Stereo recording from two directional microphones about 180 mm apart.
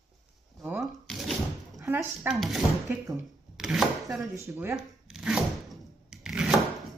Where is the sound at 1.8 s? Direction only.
10° right (ahead or behind).